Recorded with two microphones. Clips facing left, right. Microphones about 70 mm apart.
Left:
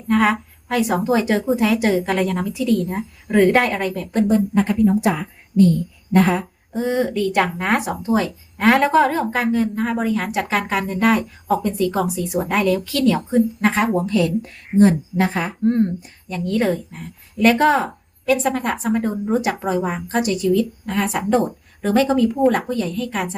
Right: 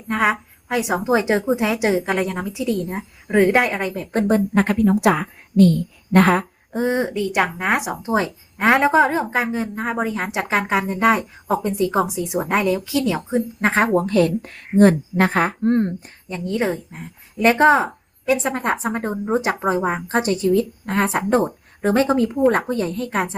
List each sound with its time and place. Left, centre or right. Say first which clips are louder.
0.1 s a woman's voice: left 2 dB; centre
4.1 s a woman's voice: left 1 dB; right
4.5 s a woman's voice: even; right
6.7 s speech: even; right
7.1 s a woman's voice: left 2 dB; centre
8.0 s speech: left 1 dB; right
13.6 s speech: even; right
13.9 s a woman's voice: right 2 dB; right
16.3 s a woman's voice: left 2 dB; centre